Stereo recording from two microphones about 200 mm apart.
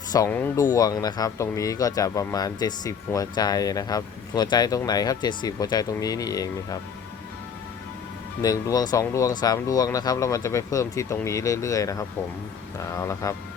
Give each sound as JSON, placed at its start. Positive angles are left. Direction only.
{"t": 0.3, "sound": "speech", "side_deg": 10}
{"t": 8.4, "sound": "speech", "side_deg": 20}